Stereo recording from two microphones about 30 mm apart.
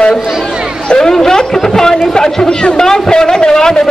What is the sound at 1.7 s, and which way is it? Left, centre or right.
A man's voice, left.